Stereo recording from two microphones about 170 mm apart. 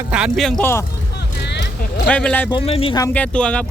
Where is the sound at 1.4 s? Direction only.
85° left.